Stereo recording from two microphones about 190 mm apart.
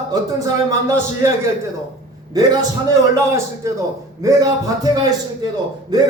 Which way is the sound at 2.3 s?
20° right (ahead or behind).